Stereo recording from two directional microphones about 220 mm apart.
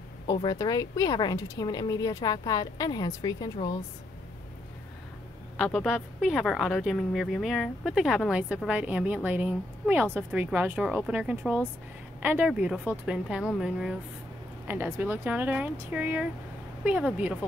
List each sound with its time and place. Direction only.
0.3 s speech: 20° left (ahead or behind)
5.6 s a woman's voice: centre (ahead or behind)